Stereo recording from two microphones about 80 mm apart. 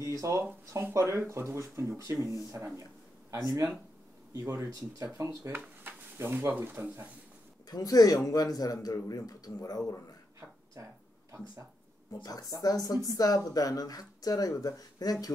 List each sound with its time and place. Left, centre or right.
0.0 s speech: right
4.3 s speech: right
7.7 s speech: left
10.8 s speech: right
12.1 s speech: left